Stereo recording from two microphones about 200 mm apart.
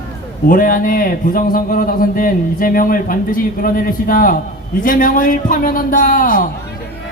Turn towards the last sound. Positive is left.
turn(degrees=45)  # may be behind; listen again after turning